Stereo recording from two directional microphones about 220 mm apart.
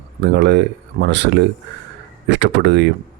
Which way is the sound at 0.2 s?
50° right (ahead or behind).